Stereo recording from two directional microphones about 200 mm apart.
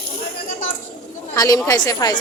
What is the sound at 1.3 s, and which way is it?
Speech, 15° left (ahead or behind).